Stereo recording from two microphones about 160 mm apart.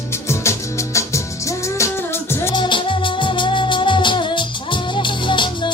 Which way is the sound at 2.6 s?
30° left (ahead or behind).